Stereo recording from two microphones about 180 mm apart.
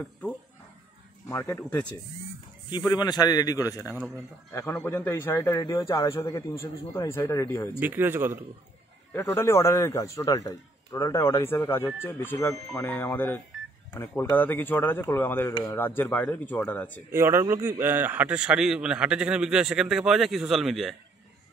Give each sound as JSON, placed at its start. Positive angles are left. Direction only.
{"t": 1.3, "sound": "a man's voice", "side_deg": 15}
{"t": 7.8, "sound": "speech", "side_deg": -10}
{"t": 9.1, "sound": "a man's voice", "side_deg": 15}
{"t": 17.1, "sound": "a man's voice", "side_deg": -15}